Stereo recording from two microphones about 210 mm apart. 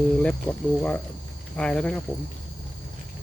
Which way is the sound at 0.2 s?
5° left (ahead or behind).